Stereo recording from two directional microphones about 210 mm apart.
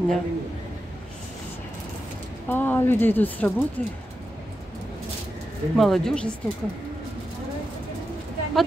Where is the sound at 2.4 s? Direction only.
10° left (ahead or behind).